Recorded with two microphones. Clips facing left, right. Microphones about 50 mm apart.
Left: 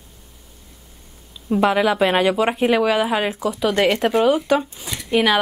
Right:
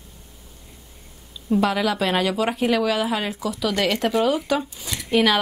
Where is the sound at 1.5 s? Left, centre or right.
Left.